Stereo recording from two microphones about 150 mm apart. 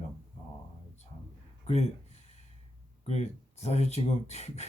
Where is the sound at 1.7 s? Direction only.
45° left (ahead or behind).